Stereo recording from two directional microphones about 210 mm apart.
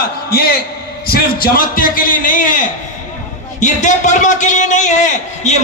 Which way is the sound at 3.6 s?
35° left (ahead or behind).